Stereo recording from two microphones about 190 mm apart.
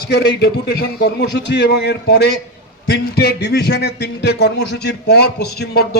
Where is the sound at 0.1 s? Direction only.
60° left (ahead or behind).